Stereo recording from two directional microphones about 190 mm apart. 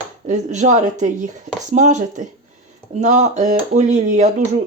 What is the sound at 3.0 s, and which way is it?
Speech, 40° right (ahead or behind).